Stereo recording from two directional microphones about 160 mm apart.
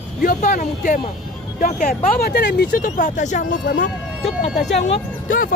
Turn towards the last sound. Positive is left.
turn(degrees=55)  # may be behind; listen again after turning